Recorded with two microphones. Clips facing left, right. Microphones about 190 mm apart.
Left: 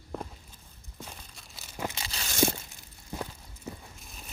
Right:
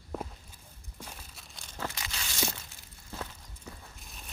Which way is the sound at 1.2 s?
Centre (ahead or behind).